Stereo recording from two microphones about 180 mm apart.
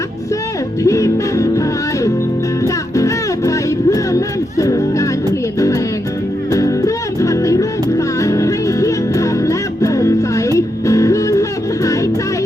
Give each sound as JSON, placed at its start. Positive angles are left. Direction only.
{"t": 0.9, "sound": "music", "side_deg": 15}
{"t": 2.6, "sound": "music", "side_deg": 15}
{"t": 6.5, "sound": "music", "side_deg": 20}